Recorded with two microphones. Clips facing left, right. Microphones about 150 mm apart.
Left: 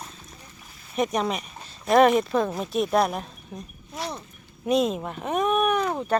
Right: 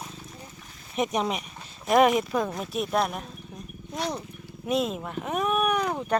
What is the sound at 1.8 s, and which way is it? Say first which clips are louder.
Speech: left 2 dB; 10° right (ahead or behind).